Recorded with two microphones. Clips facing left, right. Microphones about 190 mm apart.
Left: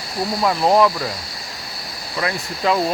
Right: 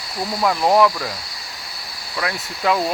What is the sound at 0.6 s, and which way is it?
Speech, 20° left (ahead or behind).